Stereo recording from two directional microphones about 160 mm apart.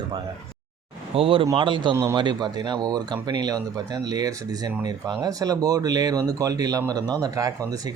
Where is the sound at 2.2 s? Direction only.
30° right (ahead or behind).